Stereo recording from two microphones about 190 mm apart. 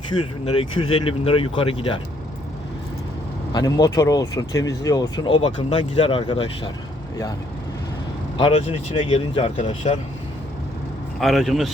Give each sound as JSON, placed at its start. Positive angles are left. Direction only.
{"t": 0.1, "sound": "speech", "side_deg": 25}
{"t": 3.5, "sound": "speech", "side_deg": 20}
{"t": 8.4, "sound": "speech", "side_deg": 30}
{"t": 11.2, "sound": "a man's voice", "side_deg": 0}